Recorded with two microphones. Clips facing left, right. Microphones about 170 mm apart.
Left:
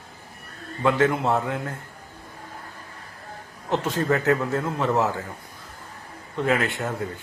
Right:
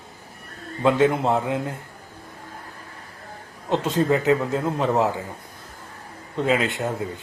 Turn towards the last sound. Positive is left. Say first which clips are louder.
# right 2 dB
turn(degrees=-20)  # may be behind; listen again after turning